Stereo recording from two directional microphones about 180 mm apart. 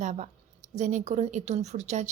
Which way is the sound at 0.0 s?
40° right (ahead or behind).